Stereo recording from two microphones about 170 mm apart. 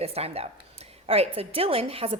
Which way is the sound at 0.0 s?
35° right (ahead or behind).